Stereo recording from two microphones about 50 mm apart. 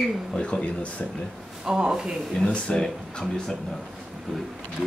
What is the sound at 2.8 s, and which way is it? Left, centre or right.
Speech, centre.